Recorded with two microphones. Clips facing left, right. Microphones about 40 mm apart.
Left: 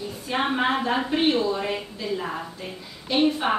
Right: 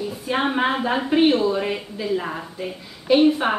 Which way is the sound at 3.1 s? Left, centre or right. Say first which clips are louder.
Right 5 dB; centre.